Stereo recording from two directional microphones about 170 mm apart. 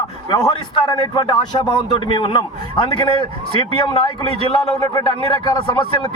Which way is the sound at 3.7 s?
30° left (ahead or behind).